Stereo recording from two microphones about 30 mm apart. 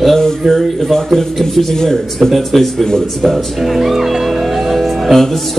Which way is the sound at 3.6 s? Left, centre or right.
Centre.